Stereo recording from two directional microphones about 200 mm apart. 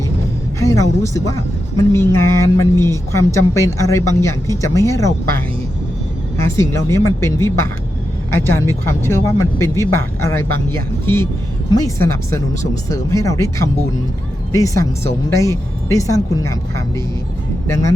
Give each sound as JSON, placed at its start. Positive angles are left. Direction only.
{"t": 0.6, "sound": "speech", "side_deg": 15}
{"t": 6.6, "sound": "speech", "side_deg": 15}